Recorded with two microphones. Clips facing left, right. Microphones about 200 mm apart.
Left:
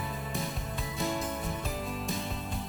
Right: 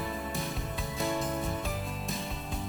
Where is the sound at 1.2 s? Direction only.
Centre (ahead or behind).